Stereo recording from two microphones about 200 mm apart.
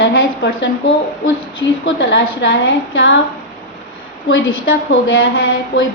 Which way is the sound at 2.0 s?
65° left (ahead or behind).